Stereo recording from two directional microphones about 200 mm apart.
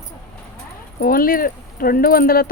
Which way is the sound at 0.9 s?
45° left (ahead or behind).